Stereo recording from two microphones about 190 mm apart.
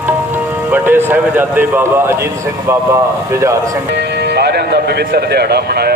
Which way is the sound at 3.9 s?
60° right (ahead or behind).